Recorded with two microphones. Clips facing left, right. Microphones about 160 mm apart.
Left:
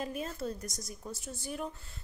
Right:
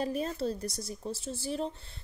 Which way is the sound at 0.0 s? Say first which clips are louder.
Right 5 dB; 35° right (ahead or behind).